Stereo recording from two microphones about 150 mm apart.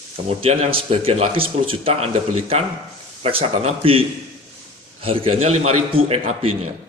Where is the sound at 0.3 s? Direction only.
40° right (ahead or behind).